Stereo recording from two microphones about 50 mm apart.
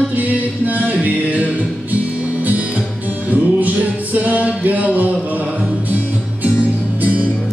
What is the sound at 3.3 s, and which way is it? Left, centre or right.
Music, right.